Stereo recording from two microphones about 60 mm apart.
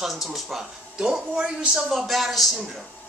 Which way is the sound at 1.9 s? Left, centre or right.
Centre.